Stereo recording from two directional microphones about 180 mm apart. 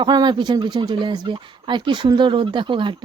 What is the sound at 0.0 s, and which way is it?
Speech, 25° right (ahead or behind).